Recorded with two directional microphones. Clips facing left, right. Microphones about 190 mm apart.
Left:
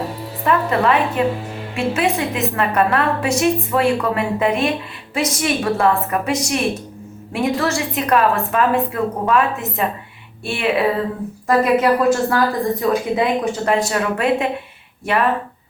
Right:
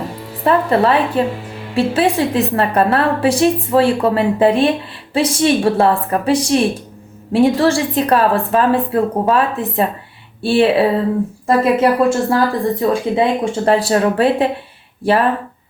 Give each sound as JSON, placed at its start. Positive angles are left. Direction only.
{"t": 0.4, "sound": "a woman's voice", "side_deg": -30}